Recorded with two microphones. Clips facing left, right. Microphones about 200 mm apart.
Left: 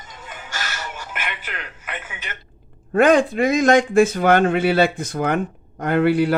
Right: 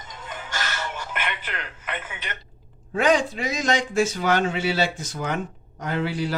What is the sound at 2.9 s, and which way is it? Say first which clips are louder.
A man's voice: left 6 dB; 55° left (ahead or behind).